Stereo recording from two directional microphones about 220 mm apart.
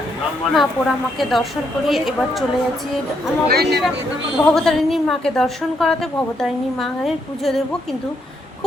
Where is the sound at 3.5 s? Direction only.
45° right (ahead or behind).